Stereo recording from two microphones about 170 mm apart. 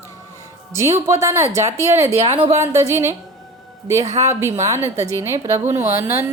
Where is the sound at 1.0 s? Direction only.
15° right (ahead or behind).